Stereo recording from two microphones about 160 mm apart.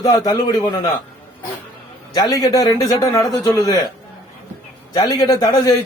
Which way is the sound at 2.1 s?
25° left (ahead or behind).